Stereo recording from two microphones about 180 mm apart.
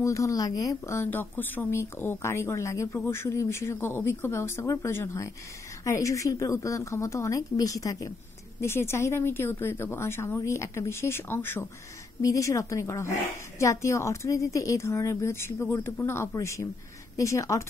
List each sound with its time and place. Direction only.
0.0 s speech: 15° left (ahead or behind)